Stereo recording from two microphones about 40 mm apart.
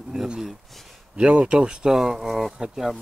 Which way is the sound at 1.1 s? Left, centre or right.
Right.